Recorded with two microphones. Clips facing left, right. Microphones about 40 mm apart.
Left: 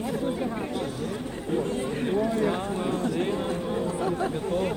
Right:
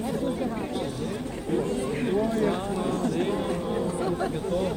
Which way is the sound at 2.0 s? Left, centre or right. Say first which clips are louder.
Even; centre.